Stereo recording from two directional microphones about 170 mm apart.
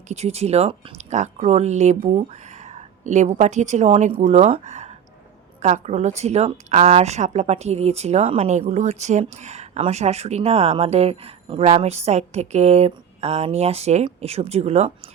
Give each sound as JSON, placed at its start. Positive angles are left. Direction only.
{"t": 0.1, "sound": "speech", "side_deg": -40}